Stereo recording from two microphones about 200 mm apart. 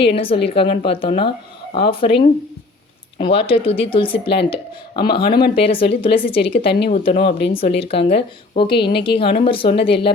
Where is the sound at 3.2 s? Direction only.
25° left (ahead or behind).